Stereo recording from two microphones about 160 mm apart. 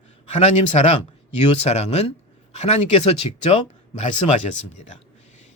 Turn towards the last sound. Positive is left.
turn(degrees=45)  # may be behind; listen again after turning